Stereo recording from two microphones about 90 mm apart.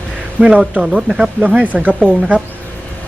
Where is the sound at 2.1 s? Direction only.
15° left (ahead or behind).